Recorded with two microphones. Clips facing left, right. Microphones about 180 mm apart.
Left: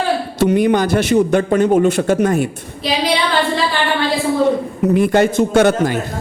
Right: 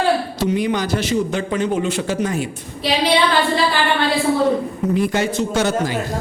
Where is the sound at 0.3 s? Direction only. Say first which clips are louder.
Left 6 dB; 60° left (ahead or behind).